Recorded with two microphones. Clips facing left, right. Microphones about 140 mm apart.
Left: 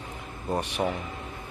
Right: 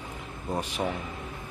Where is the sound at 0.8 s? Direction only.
20° left (ahead or behind).